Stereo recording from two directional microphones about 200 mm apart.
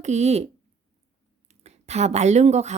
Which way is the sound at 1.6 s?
35° right (ahead or behind).